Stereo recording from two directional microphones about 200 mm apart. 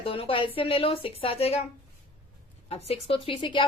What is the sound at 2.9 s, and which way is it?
Speech, 25° left (ahead or behind).